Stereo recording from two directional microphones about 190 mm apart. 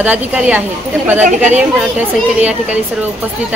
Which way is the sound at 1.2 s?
40° right (ahead or behind).